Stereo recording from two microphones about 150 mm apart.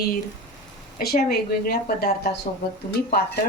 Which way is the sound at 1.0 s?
90° left.